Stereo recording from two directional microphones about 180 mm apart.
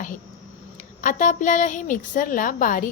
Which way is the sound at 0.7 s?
45° left (ahead or behind).